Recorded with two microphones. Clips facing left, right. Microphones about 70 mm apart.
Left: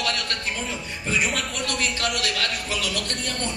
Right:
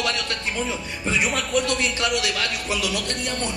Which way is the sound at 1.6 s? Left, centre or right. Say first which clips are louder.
Right 2 dB; right.